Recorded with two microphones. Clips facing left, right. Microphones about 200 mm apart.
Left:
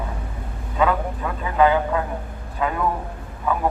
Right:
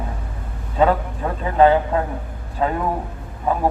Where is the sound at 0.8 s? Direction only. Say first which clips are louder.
Right 3 dB; 35° right (ahead or behind).